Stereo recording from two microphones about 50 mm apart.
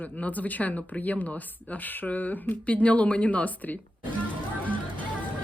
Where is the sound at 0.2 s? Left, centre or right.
Left.